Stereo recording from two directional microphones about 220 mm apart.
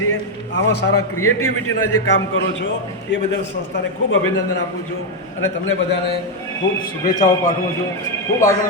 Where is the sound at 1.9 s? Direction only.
55° left (ahead or behind).